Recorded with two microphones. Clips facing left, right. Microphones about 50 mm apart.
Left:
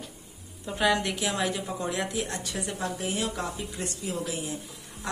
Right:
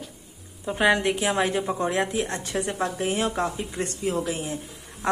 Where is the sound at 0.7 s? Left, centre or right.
Right.